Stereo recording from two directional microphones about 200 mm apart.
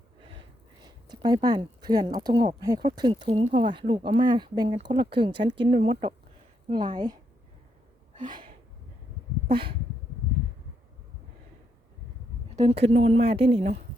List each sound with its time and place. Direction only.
0.2 s a woman's voice: 25° right (ahead or behind)
8.2 s a woman's voice: 20° right (ahead or behind)
9.5 s a woman's voice: 25° right (ahead or behind)
12.5 s a woman's voice: 30° right (ahead or behind)